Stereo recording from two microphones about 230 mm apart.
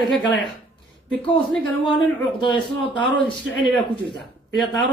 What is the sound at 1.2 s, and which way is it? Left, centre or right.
Speech, centre.